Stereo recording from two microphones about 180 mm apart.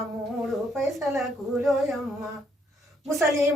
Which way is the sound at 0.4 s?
Centre (ahead or behind).